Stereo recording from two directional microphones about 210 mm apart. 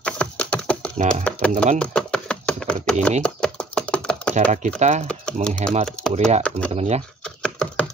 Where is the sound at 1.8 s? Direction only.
5° left (ahead or behind).